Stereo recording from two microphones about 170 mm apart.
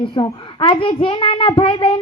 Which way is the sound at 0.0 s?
30° left (ahead or behind).